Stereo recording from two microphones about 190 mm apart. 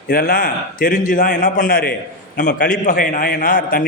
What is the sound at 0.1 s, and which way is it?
A man's voice, 50° left (ahead or behind).